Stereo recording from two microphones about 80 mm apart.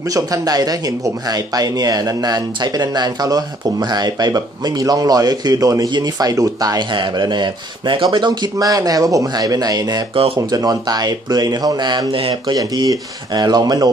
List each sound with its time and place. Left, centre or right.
0.1 s speech: right
5.9 s speech: right
6.9 s speech: right
12.5 s speech: right